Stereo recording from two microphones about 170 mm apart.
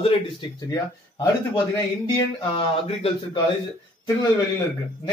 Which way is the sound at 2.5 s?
30° left (ahead or behind).